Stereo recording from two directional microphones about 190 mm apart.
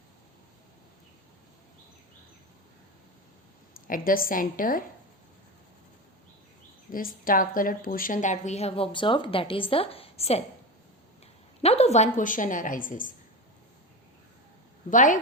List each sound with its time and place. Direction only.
3.8 s a woman's voice: 45° left (ahead or behind)
6.9 s a woman's voice: 50° left (ahead or behind); by 10.4 s 30° left (ahead or behind)
11.6 s a woman's voice: 35° left (ahead or behind)
14.8 s a woman's voice: 40° left (ahead or behind)